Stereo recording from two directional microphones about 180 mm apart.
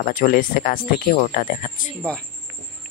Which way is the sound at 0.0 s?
50° left (ahead or behind).